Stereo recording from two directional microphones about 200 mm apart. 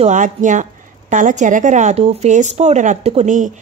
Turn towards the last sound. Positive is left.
turn(degrees=-35)  # may be behind; listen again after turning